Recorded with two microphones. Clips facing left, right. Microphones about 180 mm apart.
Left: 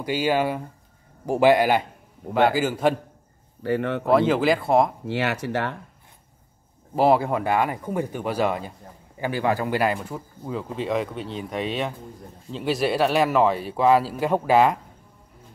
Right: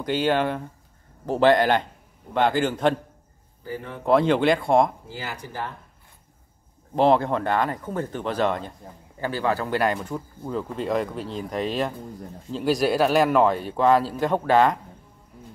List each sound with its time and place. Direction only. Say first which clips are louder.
0.0 s speech: even; 10° left (ahead or behind)
3.6 s speech: left 10 dB; 75° left (ahead or behind)
4.0 s speech: right 2 dB; 5° left (ahead or behind)
5.0 s speech: left 10 dB; 75° left (ahead or behind)
7.0 s speech: even; 5° left (ahead or behind)